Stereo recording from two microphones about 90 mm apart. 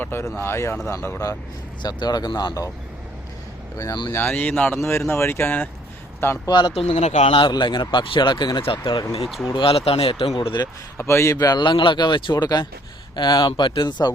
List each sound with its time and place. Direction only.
0.0 s speech: 25° left (ahead or behind)
1.8 s speech: 50° left (ahead or behind)
4.1 s speech: 20° left (ahead or behind)
6.5 s speech: 60° left (ahead or behind); by 7.5 s 80° left
7.5 s speech: 60° left (ahead or behind)
9.6 s speech: 90° left; by 10.7 s 60° left (ahead or behind)
10.9 s speech: 30° left (ahead or behind)
11.3 s speech: 50° left (ahead or behind)